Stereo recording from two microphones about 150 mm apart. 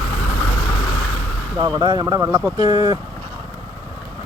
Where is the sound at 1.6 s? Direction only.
30° right (ahead or behind).